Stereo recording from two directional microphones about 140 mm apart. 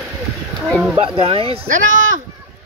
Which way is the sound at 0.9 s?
45° right (ahead or behind).